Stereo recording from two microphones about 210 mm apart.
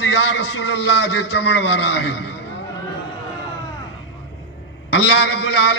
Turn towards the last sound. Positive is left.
turn(degrees=55)  # may be behind; listen again after turning